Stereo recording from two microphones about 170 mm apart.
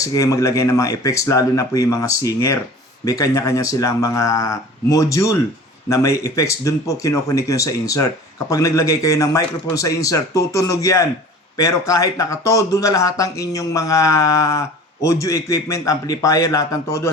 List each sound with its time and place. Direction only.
0.0 s a man's voice: 20° left (ahead or behind)